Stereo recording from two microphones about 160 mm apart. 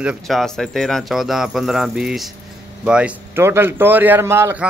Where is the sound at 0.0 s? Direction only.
5° right (ahead or behind).